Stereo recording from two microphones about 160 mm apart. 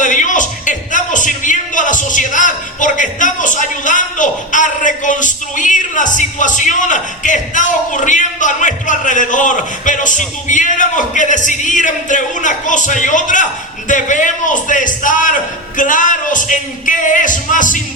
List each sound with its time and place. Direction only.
0.0 s a man's voice: 50° left (ahead or behind)